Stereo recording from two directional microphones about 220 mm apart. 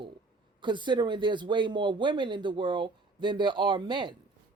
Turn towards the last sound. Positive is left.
turn(degrees=-20)  # may be behind; listen again after turning